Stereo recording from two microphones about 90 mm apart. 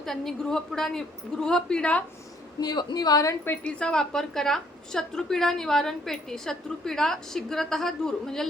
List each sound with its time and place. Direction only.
0.0 s a woman's voice: 5° left (ahead or behind)
2.6 s a woman's voice: 50° left (ahead or behind)
3.4 s a woman's voice: 20° left (ahead or behind)